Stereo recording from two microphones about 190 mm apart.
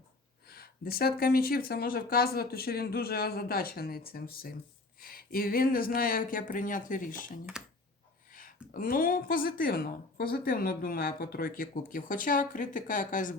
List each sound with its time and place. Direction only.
0.4 s a woman's voice: 55° left (ahead or behind)
7.6 s speech: 5° right (ahead or behind)
8.3 s a woman's voice: 45° left (ahead or behind)